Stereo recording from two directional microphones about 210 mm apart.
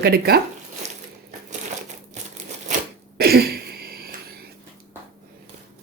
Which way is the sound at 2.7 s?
50° right (ahead or behind).